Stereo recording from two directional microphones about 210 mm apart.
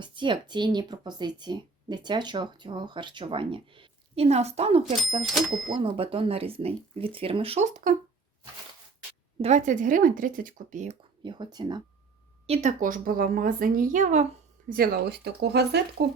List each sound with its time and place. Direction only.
0.0 s speech: 20° right (ahead or behind)
9.4 s speech: 35° right (ahead or behind)
11.2 s speech: 20° right (ahead or behind)
12.5 s speech: 35° right (ahead or behind)
14.7 s speech: 45° right (ahead or behind)